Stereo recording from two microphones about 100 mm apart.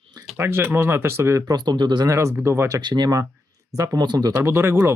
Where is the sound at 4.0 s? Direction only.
40° right (ahead or behind).